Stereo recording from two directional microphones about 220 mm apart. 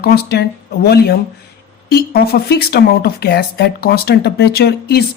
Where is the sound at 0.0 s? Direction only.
45° left (ahead or behind).